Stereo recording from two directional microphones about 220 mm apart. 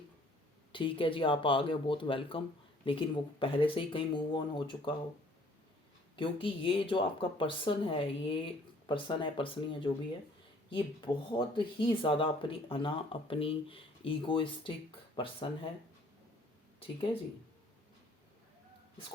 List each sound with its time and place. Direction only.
0.7 s speech: 20° left (ahead or behind)
6.1 s speech: 25° left (ahead or behind)
16.8 s speech: 25° left (ahead or behind)